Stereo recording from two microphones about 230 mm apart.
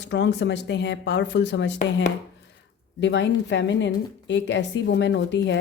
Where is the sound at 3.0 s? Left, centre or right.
Left.